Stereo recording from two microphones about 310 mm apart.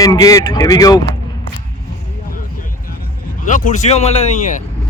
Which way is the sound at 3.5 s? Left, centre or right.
Left.